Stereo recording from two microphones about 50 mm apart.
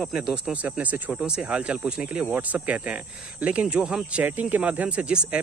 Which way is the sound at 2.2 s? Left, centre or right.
Right.